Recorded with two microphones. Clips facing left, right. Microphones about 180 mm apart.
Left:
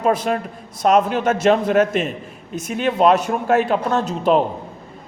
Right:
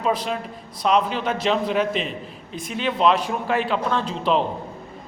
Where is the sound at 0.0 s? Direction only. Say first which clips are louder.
Left 5 dB; 50° left (ahead or behind).